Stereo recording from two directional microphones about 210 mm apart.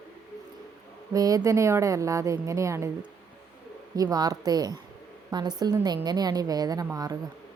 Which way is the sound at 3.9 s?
20° right (ahead or behind).